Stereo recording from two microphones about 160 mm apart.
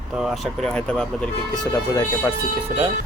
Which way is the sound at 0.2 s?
5° left (ahead or behind).